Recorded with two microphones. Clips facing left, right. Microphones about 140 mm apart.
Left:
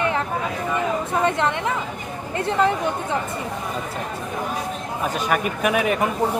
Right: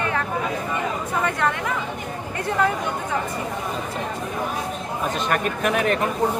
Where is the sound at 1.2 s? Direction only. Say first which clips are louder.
Left 2 dB; 25° left (ahead or behind).